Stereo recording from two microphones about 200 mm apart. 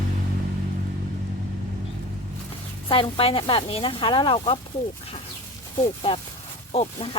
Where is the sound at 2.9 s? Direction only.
25° left (ahead or behind).